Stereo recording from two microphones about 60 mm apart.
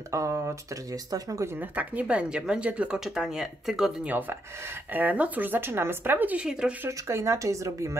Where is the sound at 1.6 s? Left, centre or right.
Right; by 3.9 s centre.